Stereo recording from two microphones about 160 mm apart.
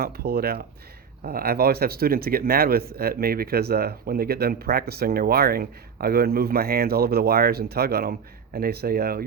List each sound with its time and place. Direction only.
0.0 s speech: 75° right (ahead or behind)